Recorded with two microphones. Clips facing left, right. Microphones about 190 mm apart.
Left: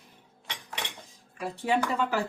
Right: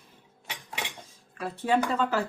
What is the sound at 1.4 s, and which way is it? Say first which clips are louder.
Speech: right 2 dB; 15° left (ahead or behind).